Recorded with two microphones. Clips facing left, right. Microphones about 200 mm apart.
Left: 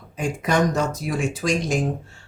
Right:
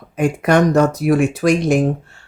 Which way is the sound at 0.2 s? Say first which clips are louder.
Right 7 dB; 60° right (ahead or behind).